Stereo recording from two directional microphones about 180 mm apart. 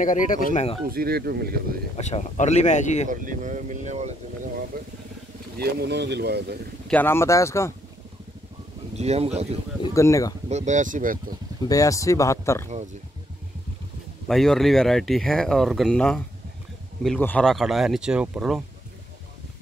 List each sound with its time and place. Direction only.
0.0 s speech: 45° left (ahead or behind)
0.8 s speech: 60° right (ahead or behind)
2.0 s speech: 40° left (ahead or behind)
3.1 s speech: 45° right (ahead or behind)
4.7 s speech: 55° right (ahead or behind)
6.9 s speech: 10° left (ahead or behind)
8.9 s speech: 35° right (ahead or behind)
9.9 s speech: 15° left (ahead or behind)
10.5 s speech: 40° right (ahead or behind)
11.6 s speech: 20° left (ahead or behind)
12.6 s speech: 40° right (ahead or behind)
14.2 s speech: centre (ahead or behind)